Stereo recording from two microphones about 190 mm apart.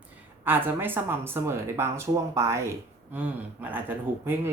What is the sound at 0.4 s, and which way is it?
Speech, 10° right (ahead or behind).